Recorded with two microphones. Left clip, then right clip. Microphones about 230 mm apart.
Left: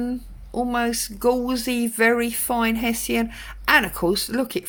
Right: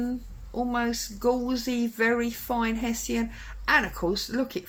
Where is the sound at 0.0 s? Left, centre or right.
Left.